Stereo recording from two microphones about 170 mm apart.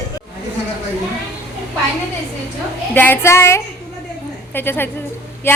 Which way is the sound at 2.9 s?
10° left (ahead or behind).